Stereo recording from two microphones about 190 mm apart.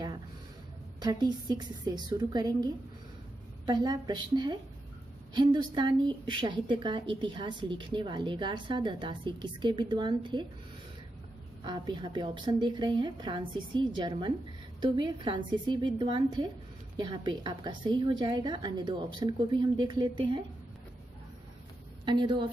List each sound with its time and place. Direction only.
1.0 s a woman's voice: 20° right (ahead or behind)
11.6 s a woman's voice: 25° right (ahead or behind)
22.0 s a woman's voice: 25° right (ahead or behind)